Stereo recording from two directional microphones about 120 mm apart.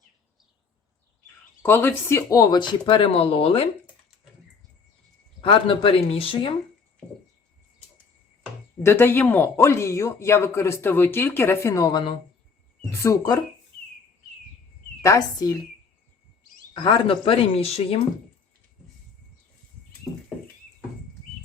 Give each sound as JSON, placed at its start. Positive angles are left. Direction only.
{"t": 1.6, "sound": "speech", "side_deg": 15}
{"t": 5.4, "sound": "speech", "side_deg": 45}
{"t": 8.8, "sound": "speech", "side_deg": 20}
{"t": 12.9, "sound": "speech", "side_deg": 25}
{"t": 15.0, "sound": "speech", "side_deg": 30}
{"t": 16.7, "sound": "speech", "side_deg": 40}